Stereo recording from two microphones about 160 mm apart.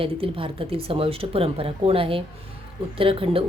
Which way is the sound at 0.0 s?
35° right (ahead or behind).